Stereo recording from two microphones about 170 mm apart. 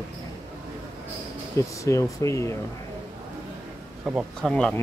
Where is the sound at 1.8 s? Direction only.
20° left (ahead or behind).